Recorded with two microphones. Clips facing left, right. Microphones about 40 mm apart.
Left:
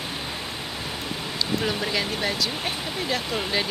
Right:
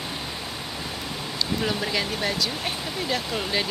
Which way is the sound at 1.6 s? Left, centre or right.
Centre.